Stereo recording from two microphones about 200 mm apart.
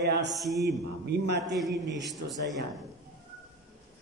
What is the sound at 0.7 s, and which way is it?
Speech, 60° right (ahead or behind).